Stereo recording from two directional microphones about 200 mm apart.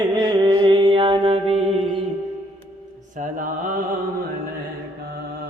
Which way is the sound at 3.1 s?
40° right (ahead or behind).